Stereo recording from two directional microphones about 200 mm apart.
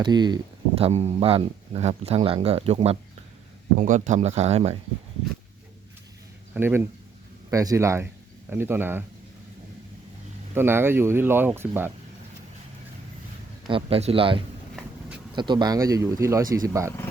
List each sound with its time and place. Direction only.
0.0 s speech: 20° right (ahead or behind)
0.8 s speech: 30° right (ahead or behind)
6.5 s speech: 10° right (ahead or behind)
10.5 s speech: 10° right (ahead or behind)
13.7 s speech: 25° right (ahead or behind)